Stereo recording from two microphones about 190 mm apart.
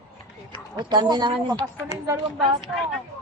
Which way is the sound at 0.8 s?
25° right (ahead or behind).